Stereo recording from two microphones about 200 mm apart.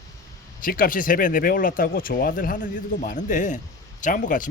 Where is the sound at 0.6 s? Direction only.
45° left (ahead or behind).